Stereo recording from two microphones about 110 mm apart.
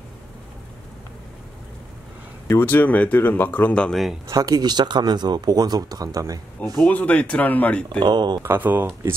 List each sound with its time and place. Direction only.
2.4 s speech: 20° left (ahead or behind); by 4.2 s centre (ahead or behind)
4.3 s speech: 35° right (ahead or behind)
6.6 s speech: centre (ahead or behind)
6.9 s speech: 15° left (ahead or behind)
8.0 s speech: 40° right (ahead or behind)
8.4 s speech: 20° right (ahead or behind)